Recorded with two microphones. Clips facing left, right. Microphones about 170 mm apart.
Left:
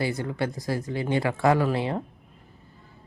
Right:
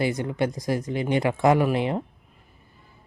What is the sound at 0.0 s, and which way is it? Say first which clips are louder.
Speech: right 3 dB; 20° right (ahead or behind).